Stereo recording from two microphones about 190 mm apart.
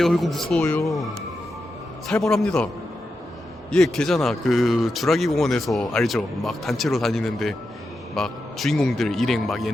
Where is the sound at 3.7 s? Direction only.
Centre (ahead or behind).